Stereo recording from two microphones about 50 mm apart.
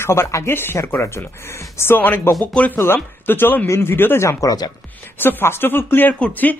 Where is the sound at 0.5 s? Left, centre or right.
Left.